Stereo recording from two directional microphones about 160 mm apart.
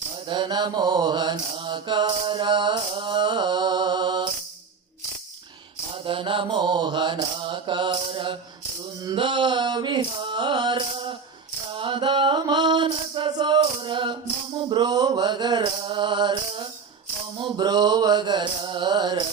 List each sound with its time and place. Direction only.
0.3 s mantra: 30° right (ahead or behind)
5.9 s mantra: 35° right (ahead or behind)
11.7 s a sound: 30° right (ahead or behind)
14.7 s mantra: 25° right (ahead or behind)